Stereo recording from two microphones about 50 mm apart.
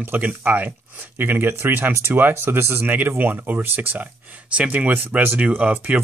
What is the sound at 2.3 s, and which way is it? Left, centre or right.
Speech, right.